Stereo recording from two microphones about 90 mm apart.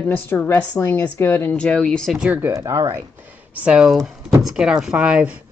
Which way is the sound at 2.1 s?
15° right (ahead or behind).